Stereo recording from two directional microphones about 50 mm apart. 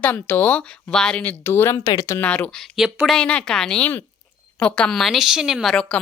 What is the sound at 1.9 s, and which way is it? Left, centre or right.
Speech, left.